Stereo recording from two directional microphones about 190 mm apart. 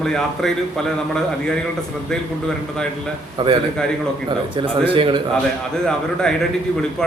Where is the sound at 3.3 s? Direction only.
25° right (ahead or behind).